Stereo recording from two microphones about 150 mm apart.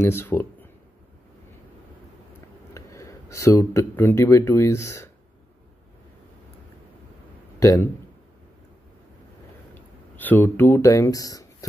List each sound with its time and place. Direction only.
0.0 s speech: 15° left (ahead or behind)
2.7 s speech: 20° left (ahead or behind)
7.5 s a man's voice: 20° left (ahead or behind)
10.1 s speech: 10° left (ahead or behind)